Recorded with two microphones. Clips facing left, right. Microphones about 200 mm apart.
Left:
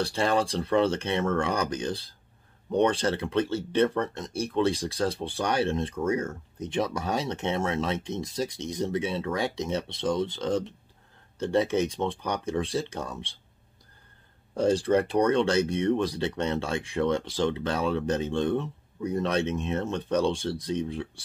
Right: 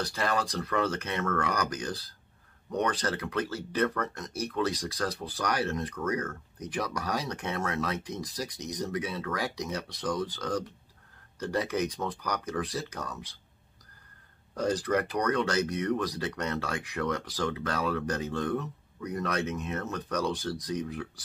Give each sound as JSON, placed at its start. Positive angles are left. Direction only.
{"t": 0.0, "sound": "speech", "side_deg": 30}
{"t": 14.5, "sound": "speech", "side_deg": 25}